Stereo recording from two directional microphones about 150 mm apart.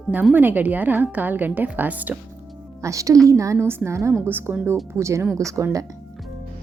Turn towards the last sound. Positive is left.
turn(degrees=-20)  # may be behind; listen again after turning